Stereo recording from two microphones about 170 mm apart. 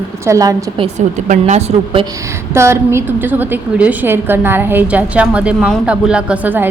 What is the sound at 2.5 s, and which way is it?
A woman's voice, 15° right (ahead or behind).